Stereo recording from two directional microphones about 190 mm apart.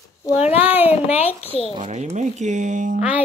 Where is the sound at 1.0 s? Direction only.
30° left (ahead or behind).